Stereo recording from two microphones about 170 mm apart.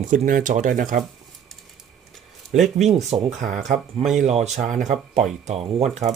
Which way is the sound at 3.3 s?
45° right (ahead or behind).